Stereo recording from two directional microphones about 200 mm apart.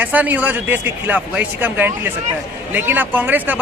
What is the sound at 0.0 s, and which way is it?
Speech, 10° right (ahead or behind).